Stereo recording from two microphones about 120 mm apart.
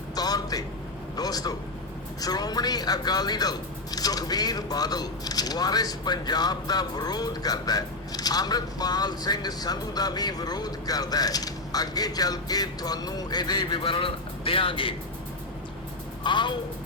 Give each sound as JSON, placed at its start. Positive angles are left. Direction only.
{"t": 0.2, "sound": "a sound", "side_deg": 30}
{"t": 1.1, "sound": "a man's voice", "side_deg": 30}
{"t": 16.2, "sound": "speech", "side_deg": 40}